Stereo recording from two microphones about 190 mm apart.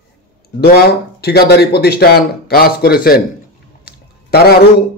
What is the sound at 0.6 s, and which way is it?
Speech, 55° left (ahead or behind).